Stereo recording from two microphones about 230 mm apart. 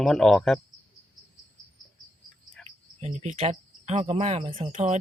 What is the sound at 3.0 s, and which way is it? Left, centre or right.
Speech, right.